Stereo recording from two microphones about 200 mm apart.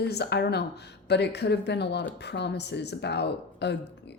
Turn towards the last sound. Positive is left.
turn(degrees=60)  # may be behind; listen again after turning